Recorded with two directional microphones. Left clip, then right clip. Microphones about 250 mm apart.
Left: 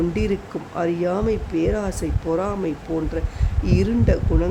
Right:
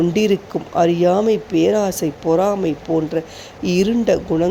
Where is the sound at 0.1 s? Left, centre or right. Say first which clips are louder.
Right 7 dB; centre.